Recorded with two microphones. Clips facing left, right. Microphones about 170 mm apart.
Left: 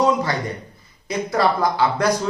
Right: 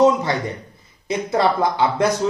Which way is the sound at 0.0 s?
25° right (ahead or behind).